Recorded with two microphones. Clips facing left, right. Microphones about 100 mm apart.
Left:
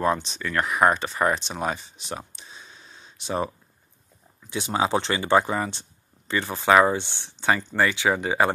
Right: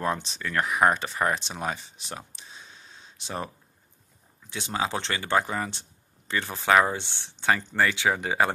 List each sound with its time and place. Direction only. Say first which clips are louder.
0.0 s speech: left 5 dB; centre (ahead or behind)
4.5 s speech: left 5 dB; 10° left (ahead or behind)